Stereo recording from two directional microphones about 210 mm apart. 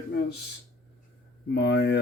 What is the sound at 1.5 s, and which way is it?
Speech, 55° left (ahead or behind).